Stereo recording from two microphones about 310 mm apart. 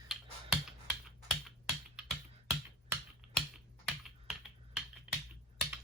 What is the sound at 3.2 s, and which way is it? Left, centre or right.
Typing, centre.